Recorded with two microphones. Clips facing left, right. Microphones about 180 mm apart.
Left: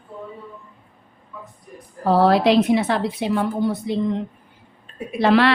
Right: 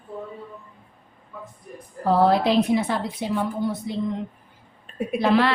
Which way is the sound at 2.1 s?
90° left.